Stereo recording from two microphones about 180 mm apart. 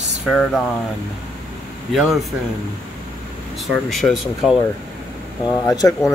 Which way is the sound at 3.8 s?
Centre (ahead or behind).